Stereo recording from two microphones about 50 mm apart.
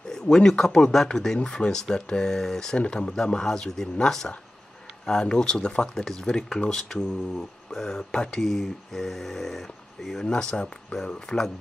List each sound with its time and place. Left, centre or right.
0.1 s speech: centre
10.2 s speech: centre